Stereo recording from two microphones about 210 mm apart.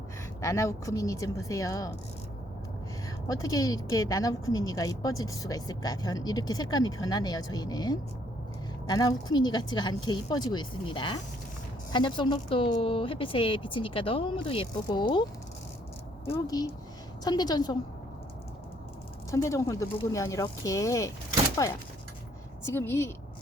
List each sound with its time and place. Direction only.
0.4 s a woman's voice: 15° left (ahead or behind)
3.2 s a woman's voice: 15° left (ahead or behind)
16.2 s a woman's voice: 15° left (ahead or behind)
19.3 s a woman's voice: 15° left (ahead or behind)